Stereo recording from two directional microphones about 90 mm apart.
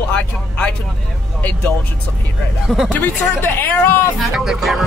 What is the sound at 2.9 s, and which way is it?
A man's voice, 20° left (ahead or behind).